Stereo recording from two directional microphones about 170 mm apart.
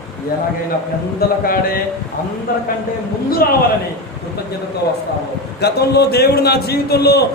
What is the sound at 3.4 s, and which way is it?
Speech, 60° left (ahead or behind).